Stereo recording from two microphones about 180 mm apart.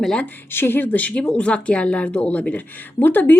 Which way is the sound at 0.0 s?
5° left (ahead or behind).